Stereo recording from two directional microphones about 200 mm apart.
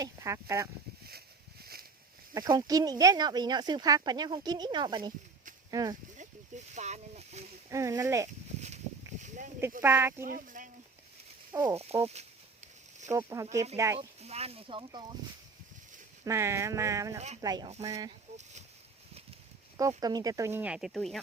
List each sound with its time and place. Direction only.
0.0 s speech: 15° right (ahead or behind)
2.3 s speech: 20° right (ahead or behind)
6.7 s speech: 35° right (ahead or behind)
7.7 s speech: 15° right (ahead or behind)
9.2 s a sound: 40° right (ahead or behind)
9.8 s speech: 10° right (ahead or behind)
10.2 s speech: 45° right (ahead or behind)
11.5 s speech: 20° right (ahead or behind)
13.1 s speech: 15° right (ahead or behind)
14.2 s speech: 30° right (ahead or behind)
16.2 s speech: 15° right (ahead or behind)
17.2 s speech: 35° right (ahead or behind)
17.4 s speech: 20° right (ahead or behind)
20.0 s speech: 20° right (ahead or behind); by 21.2 s centre (ahead or behind)